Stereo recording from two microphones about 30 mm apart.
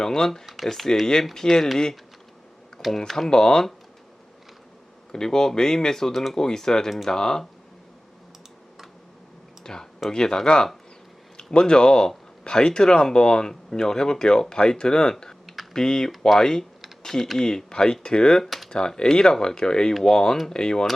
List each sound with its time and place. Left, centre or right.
0.0 s speech: centre
0.4 s speech: centre
3.2 s speech: left
5.1 s speech: left
9.7 s speech: left
11.5 s speech: left
17.0 s typing: centre
17.4 s speech: centre
18.4 s computer keyboard: centre
18.7 s speech: left